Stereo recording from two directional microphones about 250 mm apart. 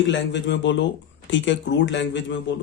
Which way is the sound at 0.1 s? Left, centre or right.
Left.